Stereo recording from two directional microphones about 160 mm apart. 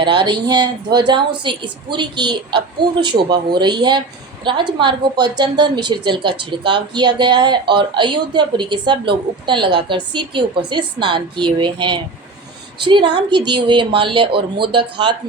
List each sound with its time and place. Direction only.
0.0 s a woman's voice: 30° right (ahead or behind)